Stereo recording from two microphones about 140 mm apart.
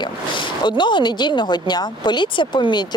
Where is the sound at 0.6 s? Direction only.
35° left (ahead or behind).